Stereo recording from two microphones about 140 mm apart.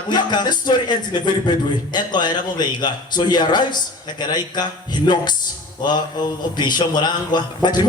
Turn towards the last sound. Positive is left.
turn(degrees=30)  # may be behind; listen again after turning